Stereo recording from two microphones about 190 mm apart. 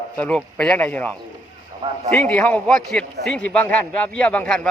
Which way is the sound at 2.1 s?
10° left (ahead or behind).